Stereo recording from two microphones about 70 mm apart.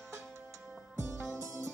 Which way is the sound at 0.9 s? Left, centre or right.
Right.